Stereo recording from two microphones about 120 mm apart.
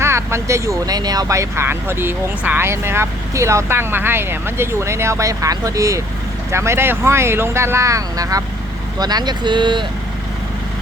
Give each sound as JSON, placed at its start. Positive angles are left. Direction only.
{"t": 0.0, "sound": "speech", "side_deg": -20}